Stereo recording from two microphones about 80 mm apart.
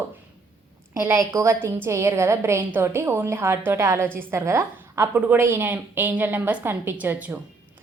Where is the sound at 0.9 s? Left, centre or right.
Right; by 7.4 s centre.